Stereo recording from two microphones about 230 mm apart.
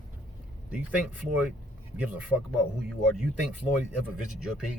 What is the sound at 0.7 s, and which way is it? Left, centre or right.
Speech, centre.